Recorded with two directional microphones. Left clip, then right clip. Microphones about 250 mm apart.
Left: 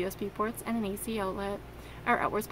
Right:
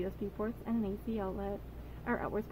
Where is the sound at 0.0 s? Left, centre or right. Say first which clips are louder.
Left 6 dB; left.